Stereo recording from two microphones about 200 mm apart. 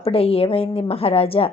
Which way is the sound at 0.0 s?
30° left (ahead or behind).